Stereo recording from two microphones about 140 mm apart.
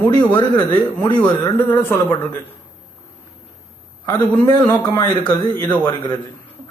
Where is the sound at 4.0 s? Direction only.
25° left (ahead or behind).